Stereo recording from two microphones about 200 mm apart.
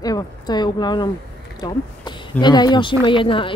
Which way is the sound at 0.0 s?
20° left (ahead or behind).